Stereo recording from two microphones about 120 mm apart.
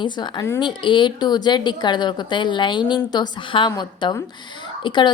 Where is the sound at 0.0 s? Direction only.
40° left (ahead or behind).